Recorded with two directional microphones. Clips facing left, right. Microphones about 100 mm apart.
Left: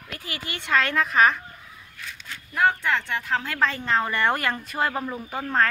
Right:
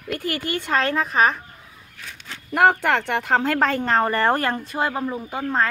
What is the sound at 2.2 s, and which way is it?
Speech, 65° right (ahead or behind).